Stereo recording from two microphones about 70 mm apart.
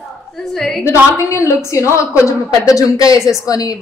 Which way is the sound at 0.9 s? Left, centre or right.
Left.